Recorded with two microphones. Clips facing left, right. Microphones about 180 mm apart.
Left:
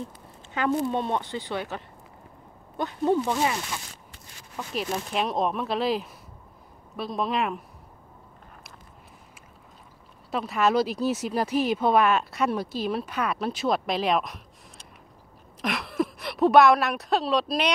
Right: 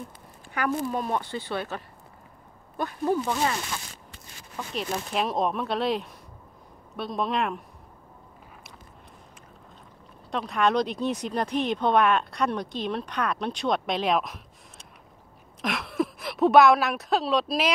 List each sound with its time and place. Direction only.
0.0 s speech: 25° left (ahead or behind)
2.8 s speech: 20° left (ahead or behind)
4.7 s speech: centre (ahead or behind)
10.3 s speech: 5° left (ahead or behind)
15.6 s a woman's voice: centre (ahead or behind)